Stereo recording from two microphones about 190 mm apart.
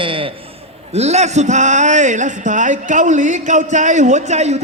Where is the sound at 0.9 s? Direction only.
35° right (ahead or behind).